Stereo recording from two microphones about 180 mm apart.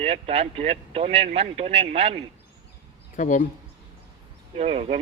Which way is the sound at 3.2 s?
45° left (ahead or behind).